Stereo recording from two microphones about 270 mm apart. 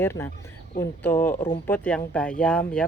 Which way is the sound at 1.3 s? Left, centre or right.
Left.